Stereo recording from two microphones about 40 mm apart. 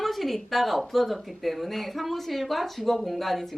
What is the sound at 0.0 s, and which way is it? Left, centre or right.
A woman's voice, centre.